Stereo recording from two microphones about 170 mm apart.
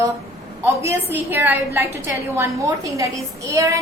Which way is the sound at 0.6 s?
15° right (ahead or behind).